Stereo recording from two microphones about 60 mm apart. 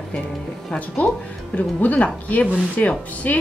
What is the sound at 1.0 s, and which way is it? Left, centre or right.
Speech, left.